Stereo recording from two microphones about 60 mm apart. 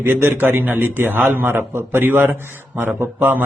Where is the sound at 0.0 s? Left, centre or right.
Right.